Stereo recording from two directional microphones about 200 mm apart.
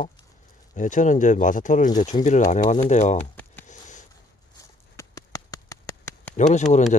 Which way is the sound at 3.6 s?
40° left (ahead or behind).